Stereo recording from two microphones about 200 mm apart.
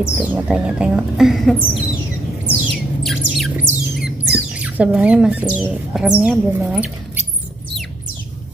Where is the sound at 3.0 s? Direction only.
Centre (ahead or behind).